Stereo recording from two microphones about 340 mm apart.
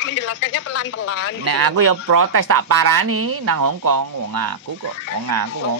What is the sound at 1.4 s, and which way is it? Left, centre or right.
Speech, right.